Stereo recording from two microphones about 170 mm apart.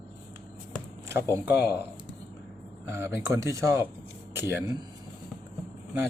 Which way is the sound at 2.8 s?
15° right (ahead or behind).